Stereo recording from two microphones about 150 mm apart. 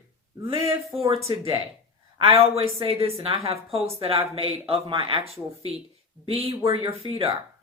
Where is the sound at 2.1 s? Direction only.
40° right (ahead or behind).